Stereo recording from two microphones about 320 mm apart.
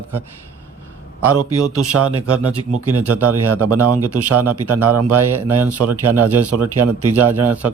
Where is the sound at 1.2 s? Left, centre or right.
Right.